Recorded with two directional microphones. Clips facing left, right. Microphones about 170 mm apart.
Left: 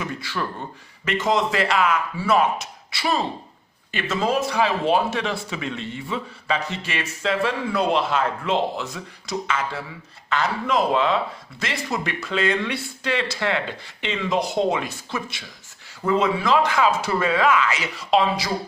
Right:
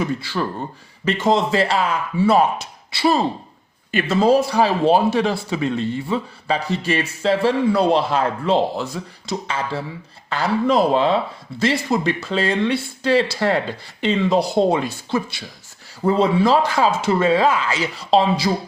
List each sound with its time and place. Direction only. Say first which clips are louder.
0.0 s speech: right 6 dB; 30° right (ahead or behind)